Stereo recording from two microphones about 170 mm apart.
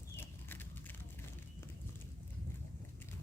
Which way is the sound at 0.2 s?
10° left (ahead or behind).